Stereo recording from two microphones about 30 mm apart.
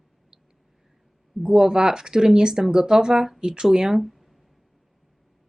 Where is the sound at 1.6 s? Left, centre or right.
Right.